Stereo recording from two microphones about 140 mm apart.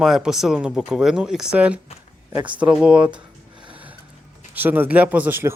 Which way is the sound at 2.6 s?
10° right (ahead or behind).